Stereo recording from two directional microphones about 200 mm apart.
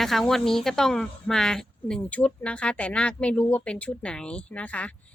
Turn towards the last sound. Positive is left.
turn(degrees=5)  # may be behind; listen again after turning